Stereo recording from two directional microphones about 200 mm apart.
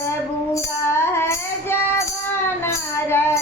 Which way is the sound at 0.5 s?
10° left (ahead or behind).